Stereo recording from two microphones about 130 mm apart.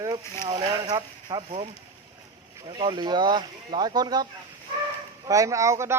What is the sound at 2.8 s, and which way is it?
Speech, 35° right (ahead or behind).